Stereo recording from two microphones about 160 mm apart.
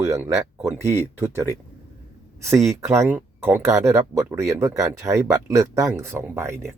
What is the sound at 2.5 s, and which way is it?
Speech, 15° right (ahead or behind).